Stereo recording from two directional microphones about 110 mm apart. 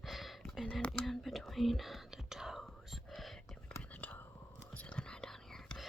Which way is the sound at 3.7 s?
15° left (ahead or behind).